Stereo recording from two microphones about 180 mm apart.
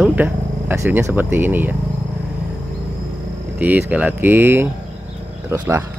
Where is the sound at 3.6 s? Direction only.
10° right (ahead or behind).